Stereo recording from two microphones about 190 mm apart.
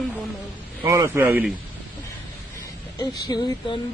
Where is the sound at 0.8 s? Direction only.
15° right (ahead or behind).